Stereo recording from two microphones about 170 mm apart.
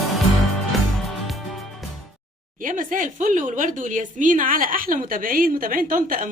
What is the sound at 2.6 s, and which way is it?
Speech, 50° right (ahead or behind).